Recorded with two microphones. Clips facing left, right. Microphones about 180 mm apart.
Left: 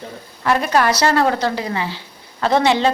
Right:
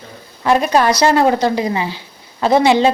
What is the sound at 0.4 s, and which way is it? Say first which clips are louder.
A woman's voice: right 3 dB; 20° right (ahead or behind).